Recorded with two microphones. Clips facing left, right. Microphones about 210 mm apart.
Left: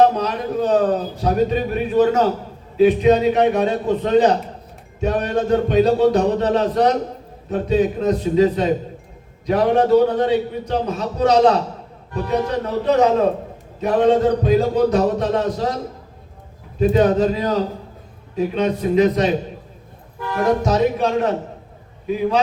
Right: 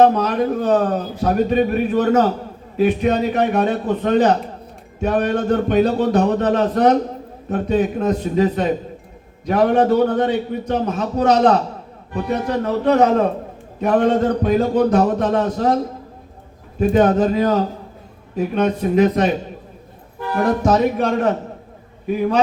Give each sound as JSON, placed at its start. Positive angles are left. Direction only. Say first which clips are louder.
{"t": 0.0, "sound": "speech", "louder": "right 2 dB", "side_deg": -50}
{"t": 16.8, "sound": "speech", "louder": "even", "side_deg": -50}
{"t": 20.7, "sound": "speech", "louder": "right 1 dB", "side_deg": -55}